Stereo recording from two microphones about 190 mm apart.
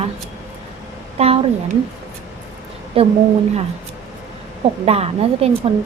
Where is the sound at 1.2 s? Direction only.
35° right (ahead or behind).